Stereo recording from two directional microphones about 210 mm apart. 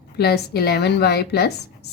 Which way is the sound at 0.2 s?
50° left (ahead or behind).